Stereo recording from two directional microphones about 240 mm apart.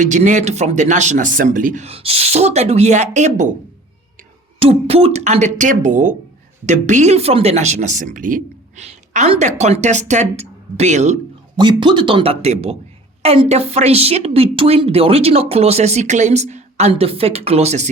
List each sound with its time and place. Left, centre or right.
0.0 s speech: right
4.6 s speech: right